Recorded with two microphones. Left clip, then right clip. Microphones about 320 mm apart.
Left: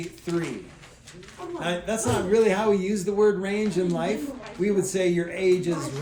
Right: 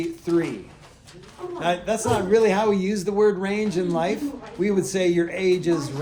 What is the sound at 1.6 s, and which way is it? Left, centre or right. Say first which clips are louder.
A man's voice: right 5 dB; right.